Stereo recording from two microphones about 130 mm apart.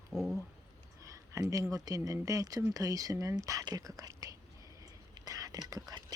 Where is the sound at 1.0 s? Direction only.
25° right (ahead or behind).